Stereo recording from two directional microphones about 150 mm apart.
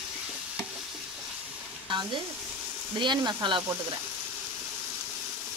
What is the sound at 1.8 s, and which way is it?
Speech, 30° right (ahead or behind).